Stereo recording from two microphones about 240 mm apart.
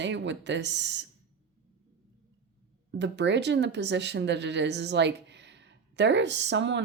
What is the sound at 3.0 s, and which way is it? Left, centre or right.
Speech, right.